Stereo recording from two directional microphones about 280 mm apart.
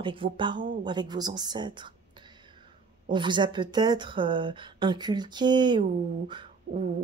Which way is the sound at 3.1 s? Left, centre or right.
Centre.